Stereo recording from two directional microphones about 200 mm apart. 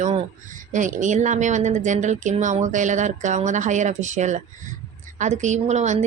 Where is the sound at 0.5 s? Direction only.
40° right (ahead or behind).